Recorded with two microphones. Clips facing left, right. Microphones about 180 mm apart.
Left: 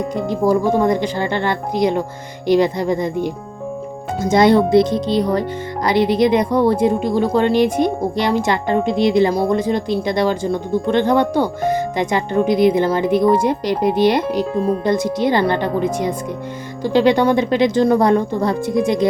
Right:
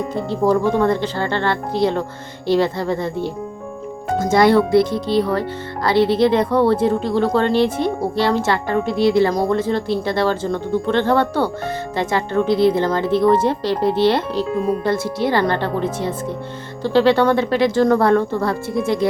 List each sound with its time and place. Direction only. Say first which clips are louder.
0.1 s speech: left 1 dB; 15° left (ahead or behind)